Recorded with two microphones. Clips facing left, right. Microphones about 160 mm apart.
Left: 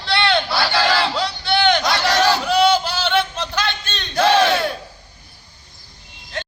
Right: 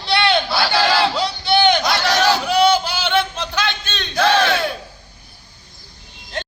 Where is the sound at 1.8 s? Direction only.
Centre (ahead or behind).